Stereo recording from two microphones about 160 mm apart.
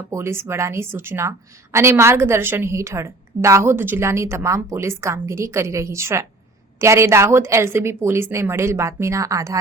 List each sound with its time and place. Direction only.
0.1 s a woman's voice: 15° right (ahead or behind)